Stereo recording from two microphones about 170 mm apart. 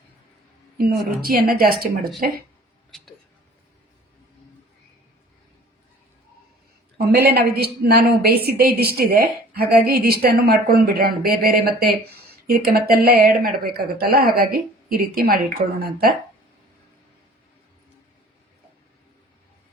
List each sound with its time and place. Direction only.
0.8 s a woman's voice: 60° right (ahead or behind)
7.1 s a woman's voice: 70° right (ahead or behind)